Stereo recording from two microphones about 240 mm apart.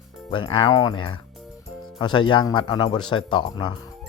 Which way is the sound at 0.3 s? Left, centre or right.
Left.